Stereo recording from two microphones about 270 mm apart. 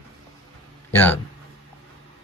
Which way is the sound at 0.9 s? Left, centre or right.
Centre.